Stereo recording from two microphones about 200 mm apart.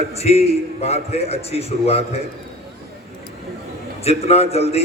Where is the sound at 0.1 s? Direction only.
30° left (ahead or behind).